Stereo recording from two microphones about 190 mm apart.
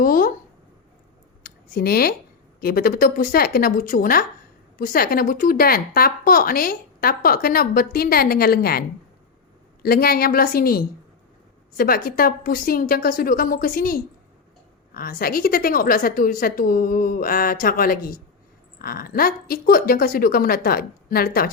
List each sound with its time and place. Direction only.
0.0 s speech: 50° left (ahead or behind)
1.5 s a sound: 50° left (ahead or behind)
2.6 s a woman's voice: 50° left (ahead or behind)
9.8 s a woman's voice: 55° left (ahead or behind)